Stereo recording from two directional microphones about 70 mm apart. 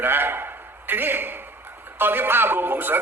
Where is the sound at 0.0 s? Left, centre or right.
Right.